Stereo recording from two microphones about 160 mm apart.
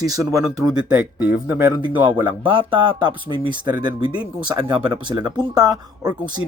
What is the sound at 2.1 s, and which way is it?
Speech, 30° right (ahead or behind).